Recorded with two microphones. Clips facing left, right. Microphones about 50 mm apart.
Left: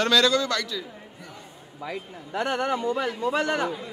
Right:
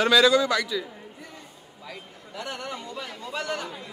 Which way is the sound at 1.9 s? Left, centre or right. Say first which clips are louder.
Left 7 dB; left.